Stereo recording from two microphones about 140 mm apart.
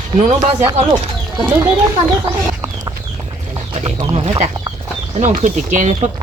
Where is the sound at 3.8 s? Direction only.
45° right (ahead or behind).